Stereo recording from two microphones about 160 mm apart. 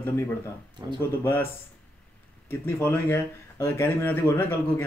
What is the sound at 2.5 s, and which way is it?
Speech, 15° left (ahead or behind).